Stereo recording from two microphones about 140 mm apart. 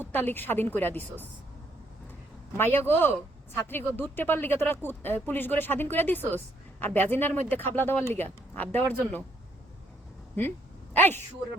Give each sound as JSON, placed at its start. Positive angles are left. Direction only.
{"t": 0.0, "sound": "speech", "side_deg": 15}
{"t": 2.6, "sound": "speech", "side_deg": 15}
{"t": 10.4, "sound": "a woman's voice", "side_deg": 15}